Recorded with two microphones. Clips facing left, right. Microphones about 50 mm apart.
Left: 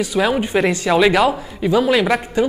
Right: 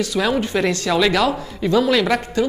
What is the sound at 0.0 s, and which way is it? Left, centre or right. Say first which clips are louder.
Speech: left 2 dB; centre.